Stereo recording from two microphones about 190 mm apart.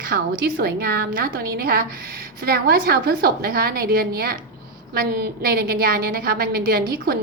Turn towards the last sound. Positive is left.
turn(degrees=-55)  # may be behind; listen again after turning